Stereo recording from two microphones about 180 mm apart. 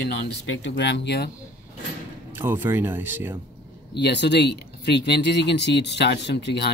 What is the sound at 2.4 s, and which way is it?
Speech, 10° right (ahead or behind).